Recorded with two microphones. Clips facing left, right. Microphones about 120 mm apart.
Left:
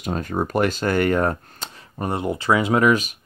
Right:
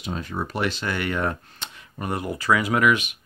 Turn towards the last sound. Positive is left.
turn(degrees=40)  # may be behind; listen again after turning